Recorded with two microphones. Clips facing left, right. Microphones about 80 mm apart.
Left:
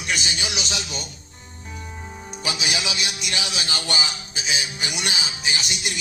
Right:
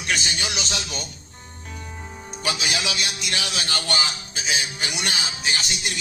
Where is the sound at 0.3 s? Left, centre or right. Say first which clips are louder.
Even; centre.